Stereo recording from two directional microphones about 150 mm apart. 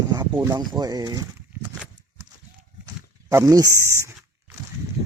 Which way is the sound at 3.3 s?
25° right (ahead or behind).